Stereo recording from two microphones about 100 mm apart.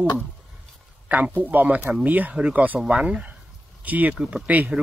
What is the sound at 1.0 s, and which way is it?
Speech, 15° right (ahead or behind).